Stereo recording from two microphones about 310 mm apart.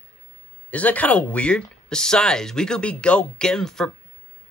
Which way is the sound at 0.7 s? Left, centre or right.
Centre.